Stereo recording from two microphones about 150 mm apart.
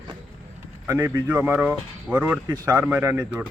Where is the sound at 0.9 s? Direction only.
20° right (ahead or behind).